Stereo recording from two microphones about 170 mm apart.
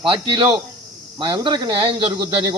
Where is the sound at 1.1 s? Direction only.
30° right (ahead or behind).